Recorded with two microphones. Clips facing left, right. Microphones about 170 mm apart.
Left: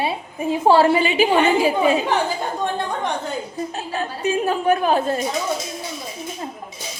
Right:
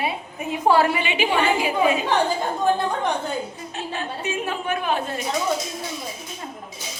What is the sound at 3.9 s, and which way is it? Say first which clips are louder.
A woman's voice: left 6 dB; 40° left (ahead or behind).